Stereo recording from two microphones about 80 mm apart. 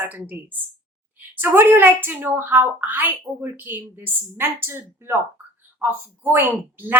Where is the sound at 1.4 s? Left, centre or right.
Right.